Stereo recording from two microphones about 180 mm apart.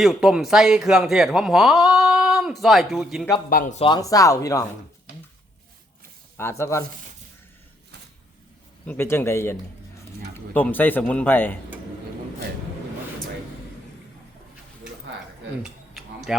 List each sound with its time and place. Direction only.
0.0 s speech: centre (ahead or behind)
3.5 s speech: 50° left (ahead or behind)
3.8 s speech: 25° left (ahead or behind)
6.3 s speech: 15° left (ahead or behind)
8.9 s speech: 10° left (ahead or behind)